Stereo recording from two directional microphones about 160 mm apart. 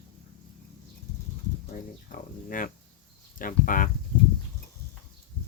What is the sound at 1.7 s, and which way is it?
Speech, 55° left (ahead or behind).